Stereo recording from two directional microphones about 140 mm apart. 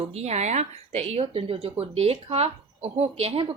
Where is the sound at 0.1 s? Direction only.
50° right (ahead or behind).